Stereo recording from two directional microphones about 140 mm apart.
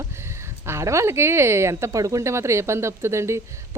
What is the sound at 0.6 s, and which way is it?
Speech, 20° right (ahead or behind).